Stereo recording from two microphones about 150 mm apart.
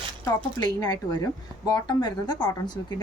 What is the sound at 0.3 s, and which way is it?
Speech, 25° left (ahead or behind).